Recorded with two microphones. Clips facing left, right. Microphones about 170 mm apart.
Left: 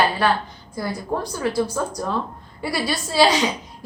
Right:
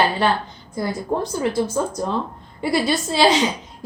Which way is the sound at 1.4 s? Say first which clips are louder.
Left 1 dB; 25° right (ahead or behind).